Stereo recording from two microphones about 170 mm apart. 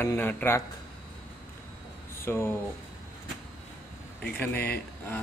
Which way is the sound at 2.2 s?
15° left (ahead or behind).